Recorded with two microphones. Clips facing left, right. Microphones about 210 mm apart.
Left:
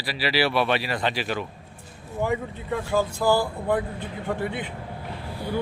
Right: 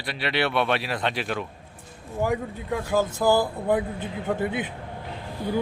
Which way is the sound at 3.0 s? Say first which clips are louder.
Right 1 dB; 20° right (ahead or behind).